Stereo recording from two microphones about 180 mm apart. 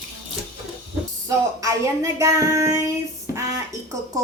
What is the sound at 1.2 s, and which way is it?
A woman's voice, 20° right (ahead or behind).